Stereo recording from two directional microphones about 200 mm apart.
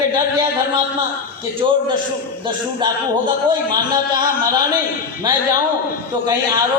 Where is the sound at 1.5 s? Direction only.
25° right (ahead or behind).